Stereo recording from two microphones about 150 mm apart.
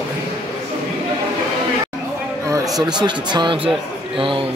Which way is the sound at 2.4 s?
20° right (ahead or behind).